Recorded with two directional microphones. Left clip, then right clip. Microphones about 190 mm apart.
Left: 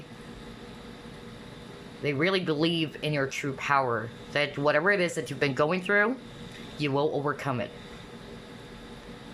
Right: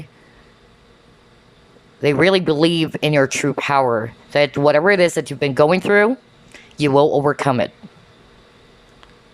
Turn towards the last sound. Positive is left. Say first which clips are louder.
# right 13 dB
turn(degrees=-30)  # may be behind; listen again after turning